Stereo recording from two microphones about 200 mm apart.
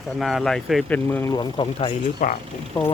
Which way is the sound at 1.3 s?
20° left (ahead or behind).